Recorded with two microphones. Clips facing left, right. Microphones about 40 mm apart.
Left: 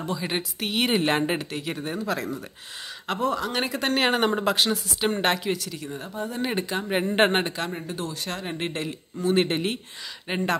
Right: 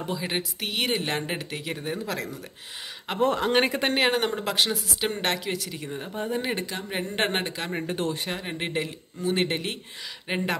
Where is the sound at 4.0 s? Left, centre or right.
Centre.